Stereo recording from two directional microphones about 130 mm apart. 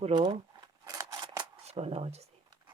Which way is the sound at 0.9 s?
30° right (ahead or behind).